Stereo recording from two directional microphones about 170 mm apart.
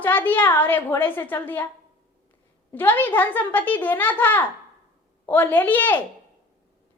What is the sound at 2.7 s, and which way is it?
A woman's voice, 10° left (ahead or behind).